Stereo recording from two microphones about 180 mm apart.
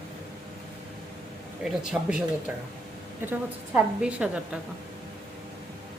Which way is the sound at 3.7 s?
5° right (ahead or behind).